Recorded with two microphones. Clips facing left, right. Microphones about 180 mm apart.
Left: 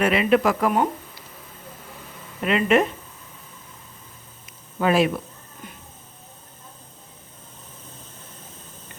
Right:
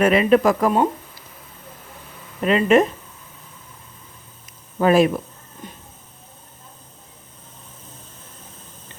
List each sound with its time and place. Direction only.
0.0 s speech: 40° right (ahead or behind)
2.4 s speech: 35° right (ahead or behind)
4.8 s speech: 45° right (ahead or behind)